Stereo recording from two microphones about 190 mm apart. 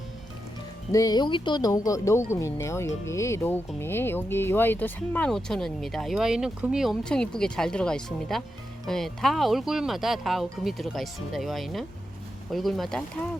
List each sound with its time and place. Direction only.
0.9 s speech: 20° left (ahead or behind); by 13.0 s centre (ahead or behind)